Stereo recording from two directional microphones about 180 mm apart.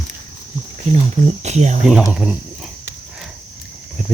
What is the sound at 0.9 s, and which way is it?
Speech, 35° right (ahead or behind).